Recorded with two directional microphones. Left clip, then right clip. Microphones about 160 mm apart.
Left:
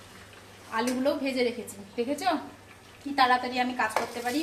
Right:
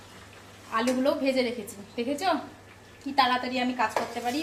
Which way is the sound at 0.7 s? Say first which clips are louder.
Right 2 dB; 20° right (ahead or behind).